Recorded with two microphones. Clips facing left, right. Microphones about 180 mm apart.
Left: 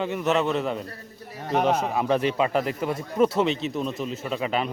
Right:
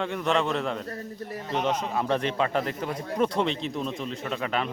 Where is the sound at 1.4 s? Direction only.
50° left (ahead or behind).